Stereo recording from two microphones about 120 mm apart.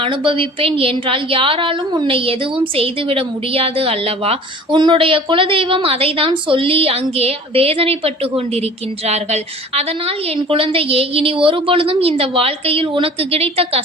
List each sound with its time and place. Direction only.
0.0 s a woman's voice: 45° right (ahead or behind)
4.8 s a woman's voice: 45° right (ahead or behind)